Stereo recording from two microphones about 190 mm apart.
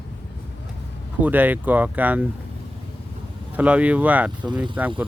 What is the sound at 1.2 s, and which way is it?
Speech, 10° right (ahead or behind).